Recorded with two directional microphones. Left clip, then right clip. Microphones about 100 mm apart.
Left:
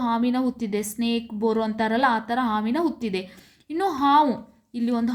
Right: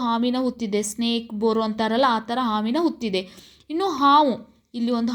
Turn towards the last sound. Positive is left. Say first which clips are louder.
# right 1 dB
turn(degrees=-25)  # may be behind; listen again after turning